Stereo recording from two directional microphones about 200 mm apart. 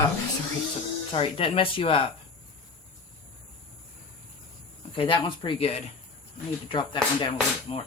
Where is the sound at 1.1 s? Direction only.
25° left (ahead or behind).